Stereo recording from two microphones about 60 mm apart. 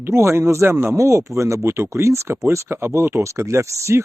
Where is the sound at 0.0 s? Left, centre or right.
Right.